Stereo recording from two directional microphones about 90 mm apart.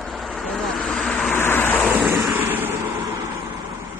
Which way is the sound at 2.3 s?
20° right (ahead or behind).